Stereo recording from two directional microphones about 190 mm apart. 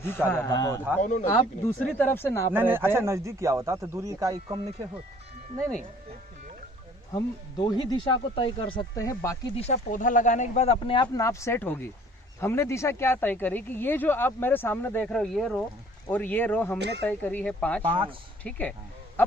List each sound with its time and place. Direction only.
0.0 s speech: 10° left (ahead or behind)
1.0 s speech: 40° left (ahead or behind)
1.6 s speech: 10° left (ahead or behind)
2.5 s a man's voice: 10° right (ahead or behind); by 4.9 s 25° right (ahead or behind)
7.6 s speech: 25° left (ahead or behind)
9.6 s speech: 40° left (ahead or behind)
10.8 s speech: 25° left (ahead or behind); by 16.7 s 10° left (ahead or behind)
16.7 s speech: 65° right (ahead or behind)
17.1 s speech: 10° left (ahead or behind)
17.8 s speech: 25° right (ahead or behind)
18.4 s speech: 5° left (ahead or behind)